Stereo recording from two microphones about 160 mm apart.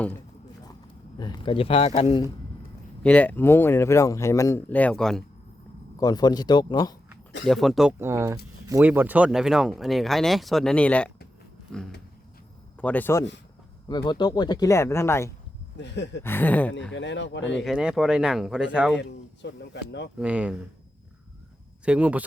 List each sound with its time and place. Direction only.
1.2 s speech: 30° left (ahead or behind)
3.0 s speech: 10° left (ahead or behind)
6.0 s speech: 25° left (ahead or behind)
7.4 s speech: centre (ahead or behind)
7.9 s speech: 15° right (ahead or behind); by 11.1 s 10° left (ahead or behind)
12.7 s a man's voice: 10° left (ahead or behind)
13.8 s speech: 25° left (ahead or behind)
15.8 s speech: 90° left
16.2 s speech: 10° left (ahead or behind)
17.0 s speech: 90° left
17.6 s speech: 5° right (ahead or behind)
18.9 s speech: 90° left
20.1 s speech: 10° right (ahead or behind)
21.8 s speech: 10° right (ahead or behind)